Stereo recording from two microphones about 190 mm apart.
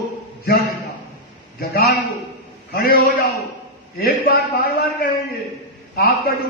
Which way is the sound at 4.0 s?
55° left (ahead or behind).